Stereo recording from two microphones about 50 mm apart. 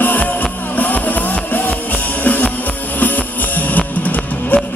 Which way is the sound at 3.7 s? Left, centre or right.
Left.